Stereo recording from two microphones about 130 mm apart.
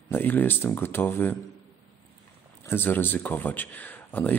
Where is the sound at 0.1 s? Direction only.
15° left (ahead or behind).